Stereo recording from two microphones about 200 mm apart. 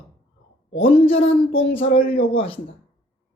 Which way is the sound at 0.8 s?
30° left (ahead or behind).